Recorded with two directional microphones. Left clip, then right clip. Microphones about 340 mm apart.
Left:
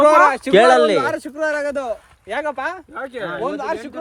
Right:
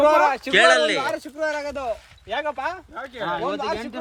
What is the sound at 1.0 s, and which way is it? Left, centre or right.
Speech, left.